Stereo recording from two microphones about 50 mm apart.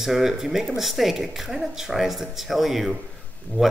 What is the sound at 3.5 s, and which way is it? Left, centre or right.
Speech, left.